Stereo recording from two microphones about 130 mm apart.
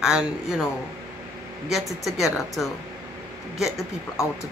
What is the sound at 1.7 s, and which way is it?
A woman's voice, centre (ahead or behind).